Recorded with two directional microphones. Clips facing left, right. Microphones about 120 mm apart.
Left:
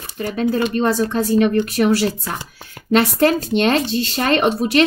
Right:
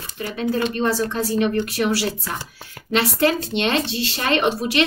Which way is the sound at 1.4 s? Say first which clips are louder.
Left 3 dB; 45° left (ahead or behind).